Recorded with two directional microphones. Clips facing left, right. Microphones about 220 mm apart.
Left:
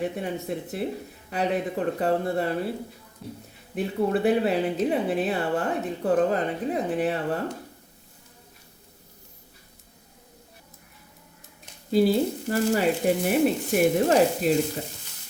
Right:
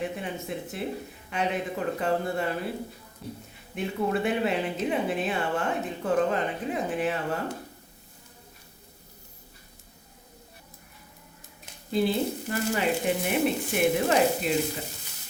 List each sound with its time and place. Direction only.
0.2 s speech: 40° left (ahead or behind)
3.8 s speech: 35° left (ahead or behind)
11.9 s speech: 40° left (ahead or behind)